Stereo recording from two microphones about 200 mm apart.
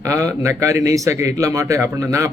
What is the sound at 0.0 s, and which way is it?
Speech, 15° right (ahead or behind).